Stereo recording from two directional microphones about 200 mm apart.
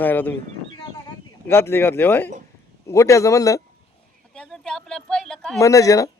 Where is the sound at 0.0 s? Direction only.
10° left (ahead or behind).